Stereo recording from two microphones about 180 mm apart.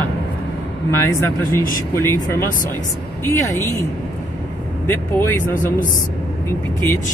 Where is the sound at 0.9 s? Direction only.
15° left (ahead or behind).